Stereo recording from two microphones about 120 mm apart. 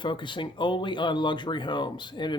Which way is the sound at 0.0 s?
45° left (ahead or behind).